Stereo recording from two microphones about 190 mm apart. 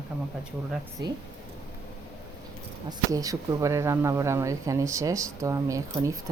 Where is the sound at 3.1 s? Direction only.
20° right (ahead or behind).